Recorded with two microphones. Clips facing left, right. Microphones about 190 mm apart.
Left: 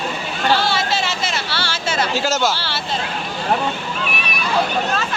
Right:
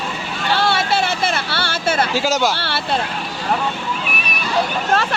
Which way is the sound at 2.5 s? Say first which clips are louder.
Right 2 dB; 60° right (ahead or behind).